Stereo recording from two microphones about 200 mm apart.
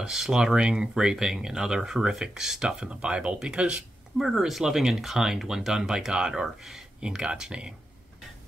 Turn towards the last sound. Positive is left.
turn(degrees=-5)  # may be behind; listen again after turning